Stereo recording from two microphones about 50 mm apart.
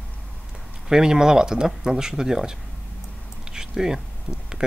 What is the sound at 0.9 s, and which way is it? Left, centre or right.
Speech, centre.